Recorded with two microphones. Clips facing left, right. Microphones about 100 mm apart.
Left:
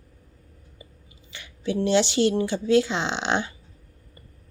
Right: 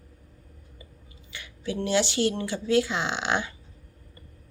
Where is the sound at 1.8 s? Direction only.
25° left (ahead or behind).